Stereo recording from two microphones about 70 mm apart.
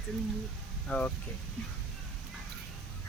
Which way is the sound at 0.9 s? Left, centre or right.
Left.